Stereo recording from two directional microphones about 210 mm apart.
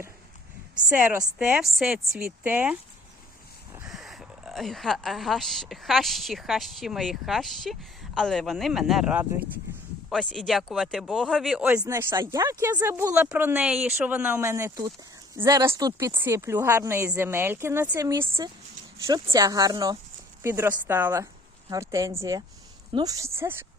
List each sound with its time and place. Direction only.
0.9 s a woman's voice: 10° right (ahead or behind)